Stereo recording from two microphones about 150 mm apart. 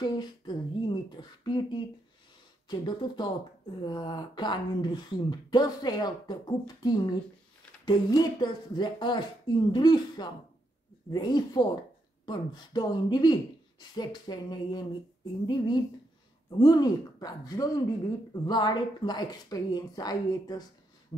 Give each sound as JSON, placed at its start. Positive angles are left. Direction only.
{"t": 0.0, "sound": "speech", "side_deg": 30}